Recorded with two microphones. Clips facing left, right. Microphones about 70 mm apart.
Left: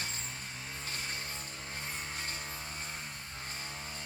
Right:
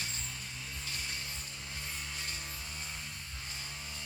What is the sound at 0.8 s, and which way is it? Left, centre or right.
Vehicle, left.